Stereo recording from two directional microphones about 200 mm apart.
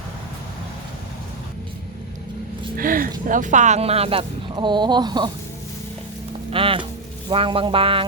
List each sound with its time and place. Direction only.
2.7 s speech: 45° right (ahead or behind); by 5.3 s 20° right (ahead or behind)
6.5 s speech: 25° right (ahead or behind)